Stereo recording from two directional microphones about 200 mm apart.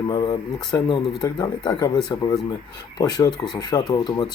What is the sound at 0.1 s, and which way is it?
Speech, 20° left (ahead or behind).